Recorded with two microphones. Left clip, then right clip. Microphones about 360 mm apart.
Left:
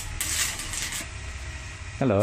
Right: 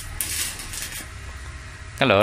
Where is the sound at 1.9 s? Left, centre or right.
Right.